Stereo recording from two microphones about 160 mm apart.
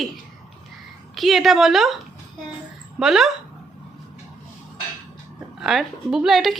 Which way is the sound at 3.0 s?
Centre (ahead or behind).